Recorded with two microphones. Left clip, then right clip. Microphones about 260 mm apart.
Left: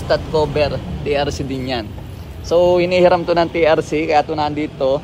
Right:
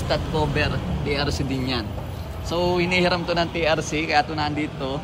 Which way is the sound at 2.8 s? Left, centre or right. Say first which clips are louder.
Left 8 dB; centre.